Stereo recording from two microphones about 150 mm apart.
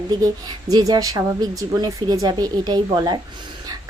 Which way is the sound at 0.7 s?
25° right (ahead or behind).